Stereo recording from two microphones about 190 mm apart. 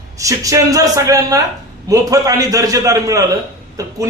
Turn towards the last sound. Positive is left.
turn(degrees=-20)  # may be behind; listen again after turning